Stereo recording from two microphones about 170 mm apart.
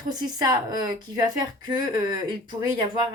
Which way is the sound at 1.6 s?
25° right (ahead or behind).